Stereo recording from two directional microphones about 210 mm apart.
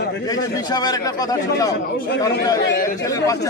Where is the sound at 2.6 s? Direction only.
45° left (ahead or behind).